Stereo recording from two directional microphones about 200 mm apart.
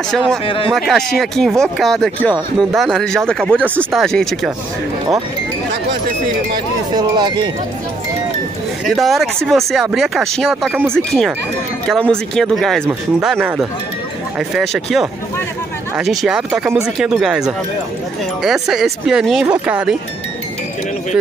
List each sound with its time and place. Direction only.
0.1 s speech: centre (ahead or behind)
6.5 s speech: 20° right (ahead or behind)
8.8 s speech: centre (ahead or behind)